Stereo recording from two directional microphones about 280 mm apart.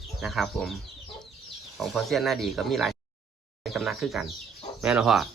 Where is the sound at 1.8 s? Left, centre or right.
Centre.